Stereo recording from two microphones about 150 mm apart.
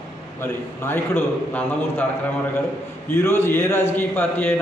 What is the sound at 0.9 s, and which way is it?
A man's voice, 15° left (ahead or behind).